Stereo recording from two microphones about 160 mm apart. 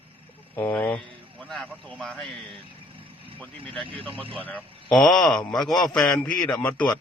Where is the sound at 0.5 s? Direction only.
10° left (ahead or behind).